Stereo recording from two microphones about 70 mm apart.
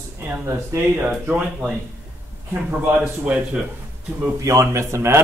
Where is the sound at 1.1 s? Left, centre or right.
Centre.